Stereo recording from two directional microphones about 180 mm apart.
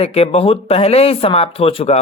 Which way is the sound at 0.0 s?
35° left (ahead or behind).